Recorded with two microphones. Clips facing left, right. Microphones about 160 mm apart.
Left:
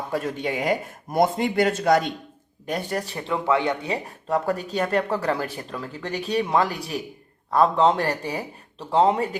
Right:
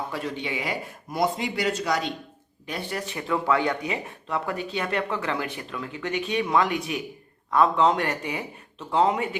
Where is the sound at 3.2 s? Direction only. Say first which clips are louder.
Left 1 dB; 20° left (ahead or behind).